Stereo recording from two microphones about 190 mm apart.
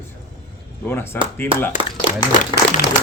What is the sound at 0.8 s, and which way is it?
Speech, 10° left (ahead or behind).